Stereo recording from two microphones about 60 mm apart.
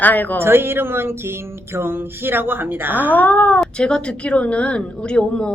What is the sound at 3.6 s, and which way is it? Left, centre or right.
A woman's voice, centre.